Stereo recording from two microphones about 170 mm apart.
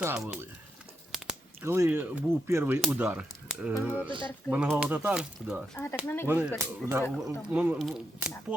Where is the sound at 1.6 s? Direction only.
15° right (ahead or behind).